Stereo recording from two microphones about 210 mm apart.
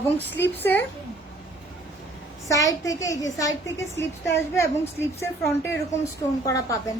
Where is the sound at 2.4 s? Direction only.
15° left (ahead or behind).